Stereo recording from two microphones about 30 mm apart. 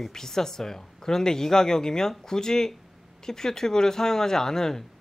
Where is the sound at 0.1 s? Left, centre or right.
Centre.